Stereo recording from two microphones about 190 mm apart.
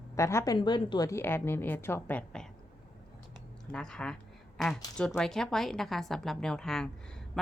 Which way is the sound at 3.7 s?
5° left (ahead or behind).